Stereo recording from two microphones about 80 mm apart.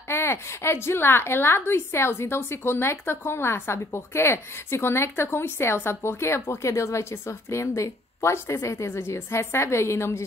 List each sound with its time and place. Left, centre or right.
0.1 s a woman's voice: left